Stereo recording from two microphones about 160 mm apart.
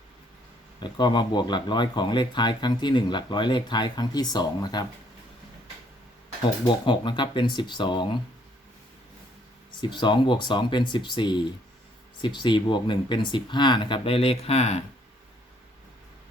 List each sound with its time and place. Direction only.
0.8 s speech: 30° left (ahead or behind)
6.8 s speech: 30° left (ahead or behind)
9.8 s speech: 30° left (ahead or behind)